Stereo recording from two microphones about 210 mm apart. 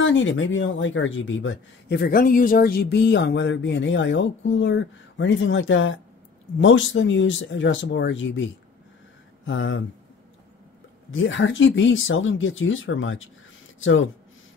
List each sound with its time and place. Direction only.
0.0 s speech: 60° left (ahead or behind)
9.5 s speech: 65° left (ahead or behind)
11.1 s speech: 65° left (ahead or behind)